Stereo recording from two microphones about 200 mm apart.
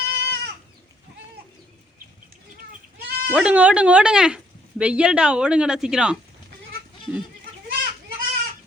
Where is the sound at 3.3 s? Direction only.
5° right (ahead or behind).